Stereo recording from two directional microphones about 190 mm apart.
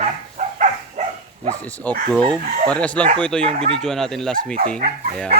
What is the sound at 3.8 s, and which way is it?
Speech, centre (ahead or behind).